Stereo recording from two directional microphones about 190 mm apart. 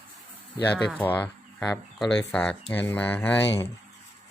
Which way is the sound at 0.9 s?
10° left (ahead or behind).